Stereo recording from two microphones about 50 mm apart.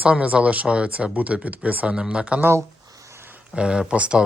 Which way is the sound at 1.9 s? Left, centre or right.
Centre.